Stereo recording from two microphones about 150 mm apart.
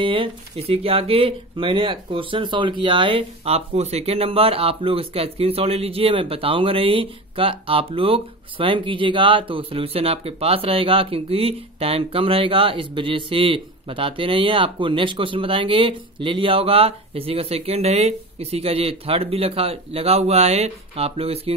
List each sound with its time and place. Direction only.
0.0 s speech: 35° right (ahead or behind)